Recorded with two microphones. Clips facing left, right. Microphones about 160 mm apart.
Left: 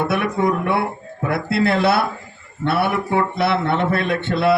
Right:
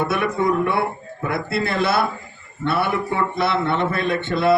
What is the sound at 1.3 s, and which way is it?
A man's voice, 60° left (ahead or behind).